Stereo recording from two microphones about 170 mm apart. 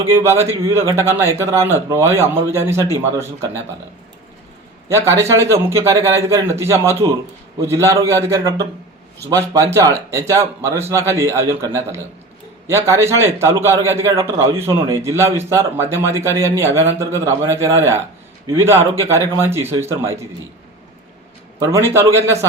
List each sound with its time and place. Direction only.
0.0 s a man's voice: 15° right (ahead or behind)
4.9 s a man's voice: 15° right (ahead or behind)
21.6 s a man's voice: 15° right (ahead or behind)